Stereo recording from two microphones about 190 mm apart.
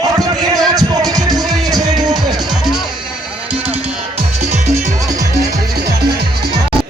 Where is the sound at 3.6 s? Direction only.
30° right (ahead or behind).